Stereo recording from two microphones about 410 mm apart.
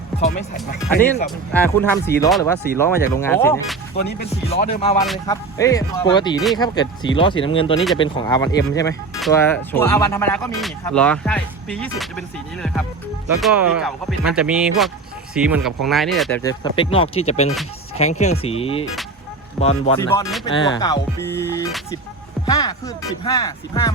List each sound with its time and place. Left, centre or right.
0.2 s speech: left
1.5 s speech: centre
4.0 s speech: left
5.0 s speech: centre
6.4 s speech: centre
7.2 s speech: centre
13.4 s speech: centre